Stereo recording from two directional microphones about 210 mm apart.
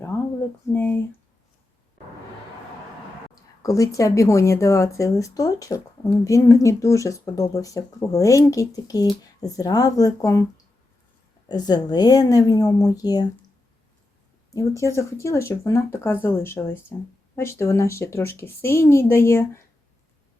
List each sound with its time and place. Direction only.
0.1 s a sound: 10° left (ahead or behind)
0.7 s speech: 10° left (ahead or behind)
3.6 s speech: 15° left (ahead or behind)
11.4 s speech: 20° left (ahead or behind)
14.5 s speech: 15° left (ahead or behind)